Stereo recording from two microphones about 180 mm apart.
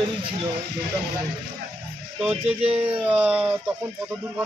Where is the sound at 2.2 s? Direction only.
10° right (ahead or behind).